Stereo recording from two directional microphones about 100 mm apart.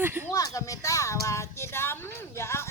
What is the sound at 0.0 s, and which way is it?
Speech, 20° right (ahead or behind).